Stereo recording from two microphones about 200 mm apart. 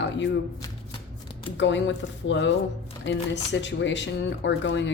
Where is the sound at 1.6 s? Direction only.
65° left (ahead or behind).